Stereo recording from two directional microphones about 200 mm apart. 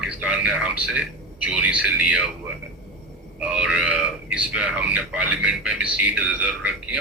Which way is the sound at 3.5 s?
5° right (ahead or behind).